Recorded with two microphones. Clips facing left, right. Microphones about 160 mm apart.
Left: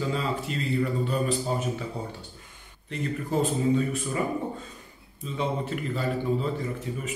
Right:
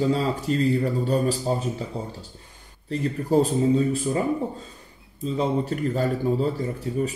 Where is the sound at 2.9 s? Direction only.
35° right (ahead or behind).